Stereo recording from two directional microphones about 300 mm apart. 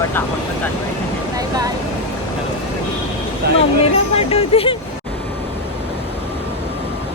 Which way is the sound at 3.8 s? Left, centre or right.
Centre.